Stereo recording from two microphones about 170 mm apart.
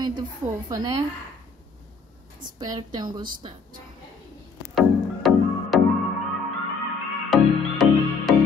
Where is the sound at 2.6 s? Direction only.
25° right (ahead or behind).